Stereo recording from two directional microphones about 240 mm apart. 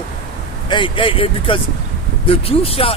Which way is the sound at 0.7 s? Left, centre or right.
Left.